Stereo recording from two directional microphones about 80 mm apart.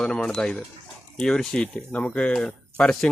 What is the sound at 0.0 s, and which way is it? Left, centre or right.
Speech, centre.